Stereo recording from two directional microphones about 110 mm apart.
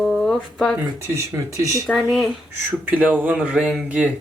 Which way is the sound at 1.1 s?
30° right (ahead or behind).